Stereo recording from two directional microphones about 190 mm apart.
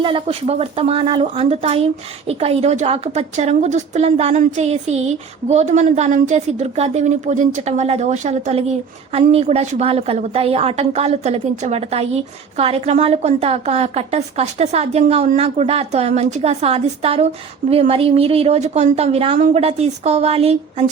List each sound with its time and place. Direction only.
0.0 s a woman's voice: 30° right (ahead or behind)